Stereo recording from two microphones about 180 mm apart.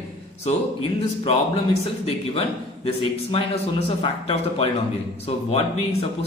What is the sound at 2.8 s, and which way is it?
Speech, 35° left (ahead or behind).